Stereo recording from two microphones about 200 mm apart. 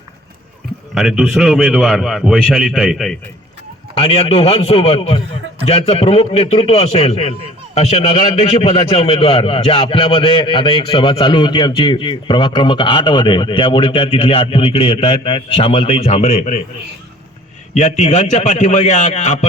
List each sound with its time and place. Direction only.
0.9 s a man's voice: centre (ahead or behind)
3.9 s a man's voice: 30° left (ahead or behind)
17.7 s a man's voice: 35° left (ahead or behind)